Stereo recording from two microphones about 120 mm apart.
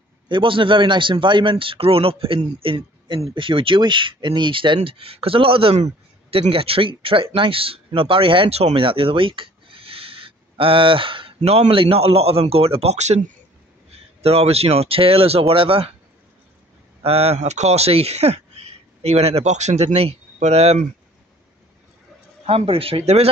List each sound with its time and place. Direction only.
0.3 s a man's voice: 45° right (ahead or behind)
11.4 s a man's voice: 60° right (ahead or behind)
14.2 s a man's voice: 55° right (ahead or behind)
17.0 s speech: 55° right (ahead or behind)
22.5 s a man's voice: 50° right (ahead or behind)